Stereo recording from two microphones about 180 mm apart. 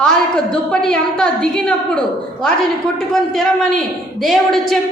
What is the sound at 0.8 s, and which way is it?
A woman's voice, 5° left (ahead or behind).